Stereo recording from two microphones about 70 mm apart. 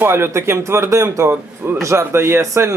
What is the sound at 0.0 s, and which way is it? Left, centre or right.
Speech, right.